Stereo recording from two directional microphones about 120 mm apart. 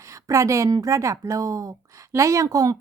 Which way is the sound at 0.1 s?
25° right (ahead or behind).